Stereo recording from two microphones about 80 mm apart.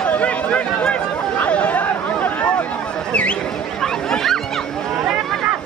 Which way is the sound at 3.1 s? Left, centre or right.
Centre.